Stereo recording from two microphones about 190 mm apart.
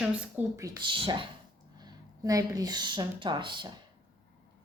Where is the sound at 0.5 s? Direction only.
20° right (ahead or behind).